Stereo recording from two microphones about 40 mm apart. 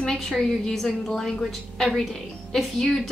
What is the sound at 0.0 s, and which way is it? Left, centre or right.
A woman's voice, centre.